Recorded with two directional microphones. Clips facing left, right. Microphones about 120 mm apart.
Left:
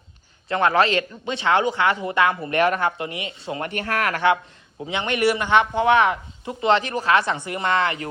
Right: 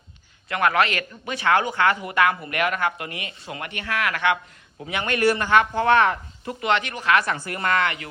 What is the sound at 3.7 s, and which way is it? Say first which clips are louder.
Speech: left 1 dB; 45° left (ahead or behind).